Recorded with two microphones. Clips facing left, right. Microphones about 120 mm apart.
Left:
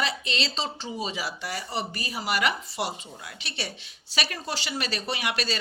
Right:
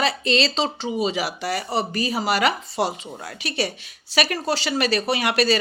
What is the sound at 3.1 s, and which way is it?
Speech, 50° right (ahead or behind).